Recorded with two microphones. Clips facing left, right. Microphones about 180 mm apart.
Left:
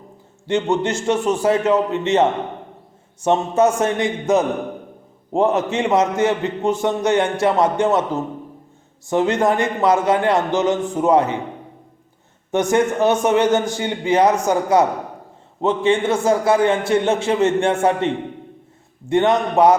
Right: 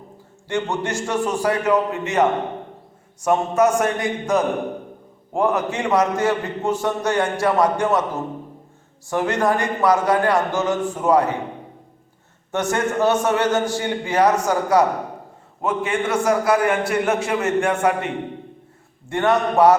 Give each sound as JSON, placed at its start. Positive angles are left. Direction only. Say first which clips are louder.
{"t": 0.4, "sound": "a man's voice", "louder": "left 5 dB", "side_deg": 20}
{"t": 9.0, "sound": "a man's voice", "louder": "left 3 dB", "side_deg": 20}
{"t": 12.5, "sound": "a man's voice", "louder": "left 5 dB", "side_deg": 20}